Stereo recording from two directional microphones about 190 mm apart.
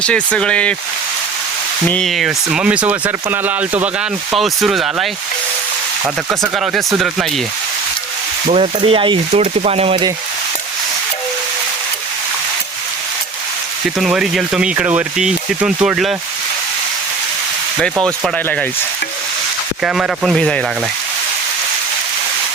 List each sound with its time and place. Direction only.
0.0 s speech: 5° left (ahead or behind)
1.9 s speech: centre (ahead or behind)
6.6 s speech: centre (ahead or behind)
8.4 s speech: 35° right (ahead or behind)
14.0 s speech: centre (ahead or behind)
18.0 s speech: 5° left (ahead or behind)
19.8 s speech: centre (ahead or behind)